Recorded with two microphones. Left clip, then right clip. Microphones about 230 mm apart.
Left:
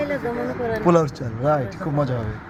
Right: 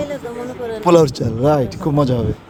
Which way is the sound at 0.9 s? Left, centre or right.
Right.